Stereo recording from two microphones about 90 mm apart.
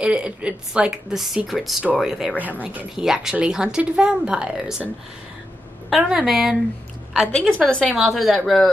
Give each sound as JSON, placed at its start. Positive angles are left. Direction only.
{"t": 0.0, "sound": "a woman's voice", "side_deg": -10}
{"t": 2.4, "sound": "speech", "side_deg": -20}
{"t": 3.0, "sound": "speech", "side_deg": -5}
{"t": 5.9, "sound": "speech", "side_deg": -5}
{"t": 7.3, "sound": "a woman's voice", "side_deg": 10}
{"t": 7.9, "sound": "a woman's voice", "side_deg": 0}